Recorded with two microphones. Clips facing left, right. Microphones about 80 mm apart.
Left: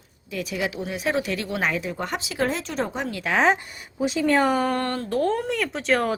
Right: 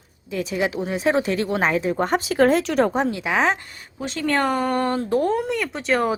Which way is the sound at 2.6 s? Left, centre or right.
Right.